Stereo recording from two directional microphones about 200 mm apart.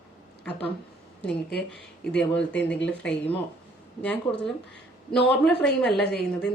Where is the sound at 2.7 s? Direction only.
65° left (ahead or behind).